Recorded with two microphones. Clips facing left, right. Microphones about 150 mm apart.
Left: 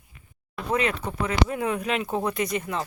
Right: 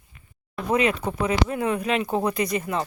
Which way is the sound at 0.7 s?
15° right (ahead or behind).